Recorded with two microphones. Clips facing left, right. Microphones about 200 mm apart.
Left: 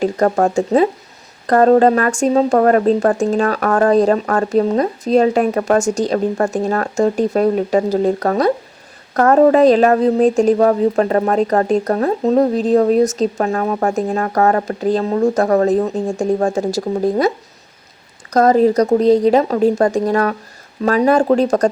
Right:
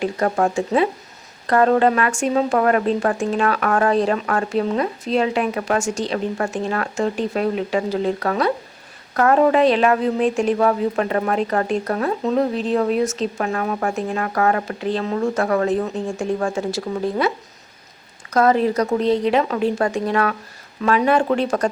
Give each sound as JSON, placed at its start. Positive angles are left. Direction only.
{"t": 0.0, "sound": "speech", "side_deg": 40}